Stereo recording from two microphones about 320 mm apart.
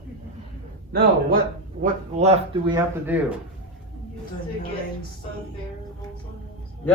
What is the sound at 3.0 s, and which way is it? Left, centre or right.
Speech, centre.